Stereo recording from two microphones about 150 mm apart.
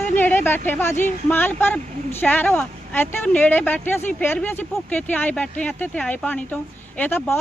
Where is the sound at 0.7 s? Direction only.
15° left (ahead or behind).